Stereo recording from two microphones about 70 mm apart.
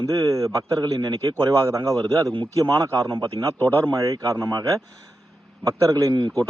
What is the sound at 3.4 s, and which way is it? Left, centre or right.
Speech, right.